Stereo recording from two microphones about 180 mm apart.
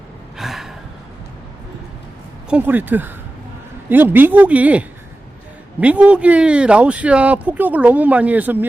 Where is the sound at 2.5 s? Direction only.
10° right (ahead or behind).